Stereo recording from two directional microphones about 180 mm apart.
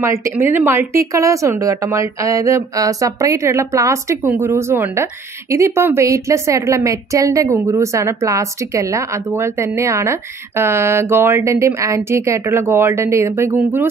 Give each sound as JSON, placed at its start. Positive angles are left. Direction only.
{"t": 0.0, "sound": "a woman's voice", "side_deg": -15}